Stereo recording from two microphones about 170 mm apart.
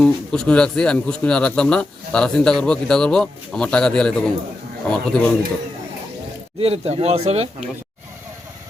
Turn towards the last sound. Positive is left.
turn(degrees=-40)  # may be behind; listen again after turning